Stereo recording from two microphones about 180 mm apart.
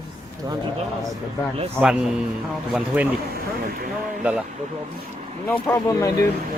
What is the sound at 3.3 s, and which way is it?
Speech, 55° right (ahead or behind).